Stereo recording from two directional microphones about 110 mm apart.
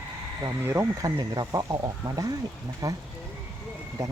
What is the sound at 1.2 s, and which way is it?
Speech, 35° right (ahead or behind).